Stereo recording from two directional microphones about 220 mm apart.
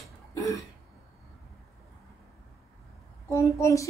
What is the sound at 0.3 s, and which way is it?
Throat clearing, 15° left (ahead or behind).